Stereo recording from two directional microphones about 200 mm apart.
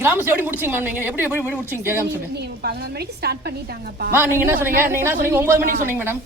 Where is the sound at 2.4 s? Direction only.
55° right (ahead or behind).